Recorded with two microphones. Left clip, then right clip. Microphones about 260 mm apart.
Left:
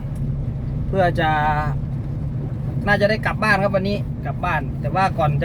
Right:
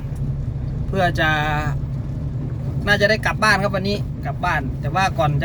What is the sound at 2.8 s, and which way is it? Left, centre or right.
Speech, centre.